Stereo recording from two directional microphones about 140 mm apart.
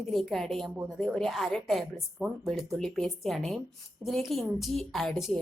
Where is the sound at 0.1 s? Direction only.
Centre (ahead or behind).